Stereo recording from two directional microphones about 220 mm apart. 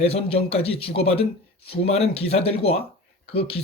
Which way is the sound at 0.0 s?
25° left (ahead or behind).